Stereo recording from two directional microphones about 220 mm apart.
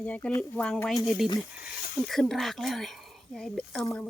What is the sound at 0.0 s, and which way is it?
Speech, 5° left (ahead or behind).